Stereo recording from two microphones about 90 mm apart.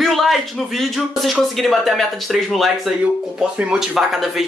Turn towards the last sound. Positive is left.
turn(degrees=0)  # may be behind; listen again after turning